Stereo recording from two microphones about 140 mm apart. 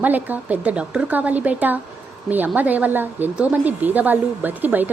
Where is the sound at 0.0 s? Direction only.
10° right (ahead or behind).